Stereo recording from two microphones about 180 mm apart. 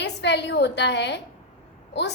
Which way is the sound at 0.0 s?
70° left (ahead or behind).